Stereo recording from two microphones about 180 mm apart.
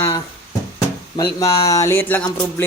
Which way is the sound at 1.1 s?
20° left (ahead or behind).